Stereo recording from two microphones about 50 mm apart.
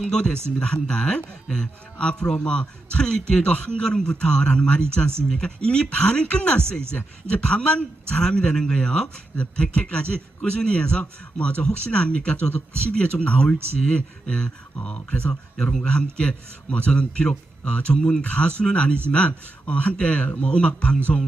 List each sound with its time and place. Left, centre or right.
0.0 s a man's voice: centre
18.2 s a man's voice: left
21.1 s music: centre